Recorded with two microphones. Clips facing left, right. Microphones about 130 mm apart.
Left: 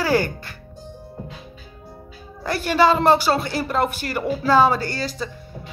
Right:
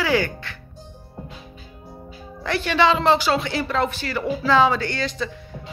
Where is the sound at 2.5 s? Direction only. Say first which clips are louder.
Left 2 dB; 40° left (ahead or behind).